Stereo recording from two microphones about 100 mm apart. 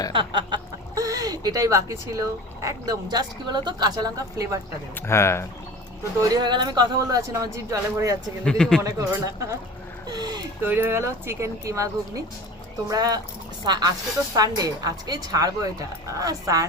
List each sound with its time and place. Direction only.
0.1 s a sound: 55° right (ahead or behind)
0.9 s speech: 35° right (ahead or behind)
4.9 s speech: 25° left (ahead or behind)
6.2 s speech: 45° right (ahead or behind)
7.2 s speech: 30° right (ahead or behind)
8.4 s a man's voice: 5° left (ahead or behind)
8.8 s speech: 35° right (ahead or behind)
10.1 s speech: 45° right (ahead or behind)
10.6 s speech: 20° right (ahead or behind)